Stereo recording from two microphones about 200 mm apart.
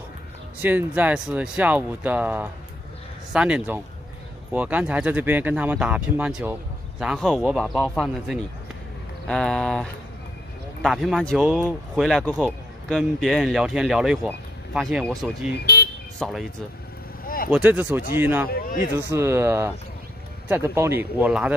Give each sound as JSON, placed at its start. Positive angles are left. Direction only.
{"t": 0.6, "sound": "speech", "side_deg": -10}
{"t": 15.6, "sound": "vehicle", "side_deg": 55}
{"t": 16.2, "sound": "speech", "side_deg": 0}
{"t": 17.5, "sound": "speech", "side_deg": -10}
{"t": 18.5, "sound": "speech", "side_deg": 45}
{"t": 18.9, "sound": "speech", "side_deg": -15}